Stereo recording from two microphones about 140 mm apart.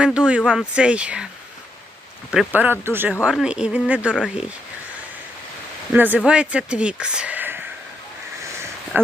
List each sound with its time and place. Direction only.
0.0 s speech: 5° right (ahead or behind)
2.5 s speech: 15° right (ahead or behind)
5.9 s speech: 10° right (ahead or behind)